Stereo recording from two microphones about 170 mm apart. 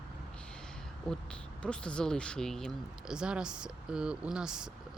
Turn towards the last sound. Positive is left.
turn(degrees=-5)  # may be behind; listen again after turning